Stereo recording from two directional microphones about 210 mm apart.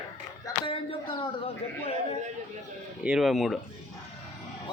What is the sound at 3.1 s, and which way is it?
Speech, centre (ahead or behind).